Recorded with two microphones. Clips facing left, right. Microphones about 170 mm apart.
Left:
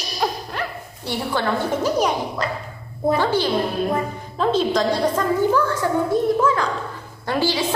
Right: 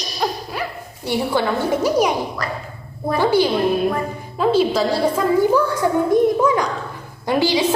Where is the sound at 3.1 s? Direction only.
10° right (ahead or behind).